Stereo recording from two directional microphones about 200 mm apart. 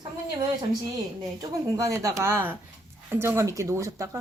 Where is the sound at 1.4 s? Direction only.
15° right (ahead or behind).